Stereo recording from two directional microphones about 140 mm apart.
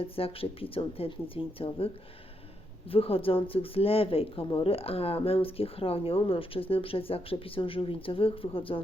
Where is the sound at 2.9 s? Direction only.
40° left (ahead or behind).